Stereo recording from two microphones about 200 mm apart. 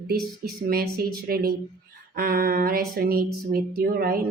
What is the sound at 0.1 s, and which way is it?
Speech, 50° right (ahead or behind).